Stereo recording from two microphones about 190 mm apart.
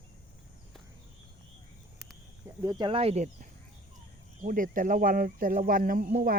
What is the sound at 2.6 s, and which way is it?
Speech, 25° right (ahead or behind).